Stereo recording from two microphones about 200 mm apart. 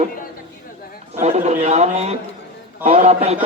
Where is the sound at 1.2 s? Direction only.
35° right (ahead or behind).